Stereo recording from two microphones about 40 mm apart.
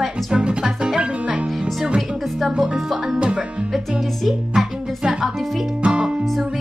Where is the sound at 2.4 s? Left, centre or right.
Centre.